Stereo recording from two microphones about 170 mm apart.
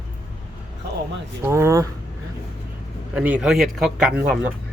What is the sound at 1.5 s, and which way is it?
Speech, 15° right (ahead or behind).